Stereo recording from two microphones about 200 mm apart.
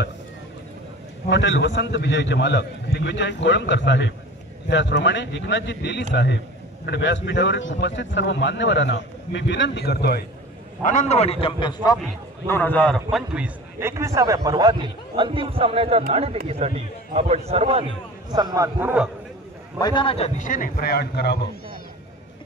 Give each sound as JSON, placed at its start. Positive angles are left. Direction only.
{"t": 1.3, "sound": "speech", "side_deg": 65}
{"t": 10.8, "sound": "a man's voice", "side_deg": 40}
{"t": 12.4, "sound": "a man's voice", "side_deg": 10}
{"t": 18.3, "sound": "a man's voice", "side_deg": -20}
{"t": 19.8, "sound": "a man's voice", "side_deg": 25}